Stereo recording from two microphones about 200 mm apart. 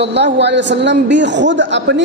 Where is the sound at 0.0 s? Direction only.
60° right (ahead or behind).